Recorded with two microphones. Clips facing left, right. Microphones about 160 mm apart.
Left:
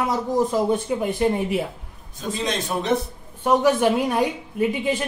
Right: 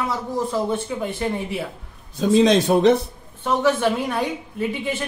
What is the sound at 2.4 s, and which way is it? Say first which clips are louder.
Speech: right 10 dB; 90° right.